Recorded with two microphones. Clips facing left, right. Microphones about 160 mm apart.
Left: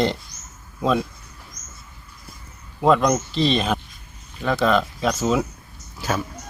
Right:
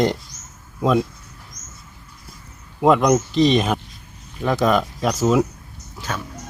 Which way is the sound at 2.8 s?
10° right (ahead or behind).